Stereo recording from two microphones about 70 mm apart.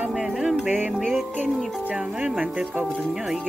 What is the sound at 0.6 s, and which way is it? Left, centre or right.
Music, right.